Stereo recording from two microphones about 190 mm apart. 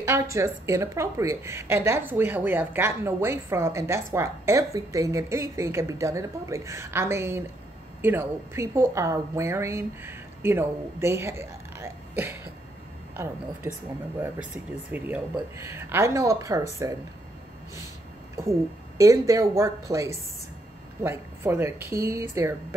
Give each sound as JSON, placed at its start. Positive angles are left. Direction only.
{"t": 0.0, "sound": "a woman's voice", "side_deg": -15}
{"t": 18.4, "sound": "a woman's voice", "side_deg": -15}